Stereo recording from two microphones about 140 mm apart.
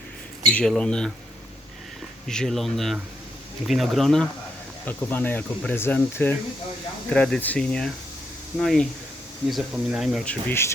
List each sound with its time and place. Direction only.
0.5 s speech: 5° left (ahead or behind)
2.2 s speech: 5° left (ahead or behind)
4.9 s speech: 15° left (ahead or behind); by 10.2 s centre (ahead or behind)
10.2 s speech: 15° left (ahead or behind)